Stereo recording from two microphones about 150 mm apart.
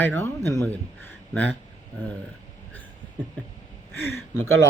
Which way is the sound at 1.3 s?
10° left (ahead or behind).